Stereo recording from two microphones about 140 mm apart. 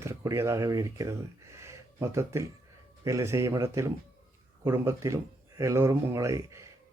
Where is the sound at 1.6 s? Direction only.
20° right (ahead or behind).